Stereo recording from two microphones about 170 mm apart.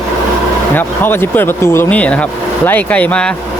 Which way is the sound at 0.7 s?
10° left (ahead or behind).